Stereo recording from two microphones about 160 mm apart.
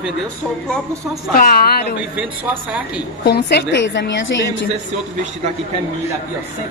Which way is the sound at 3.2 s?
90° left.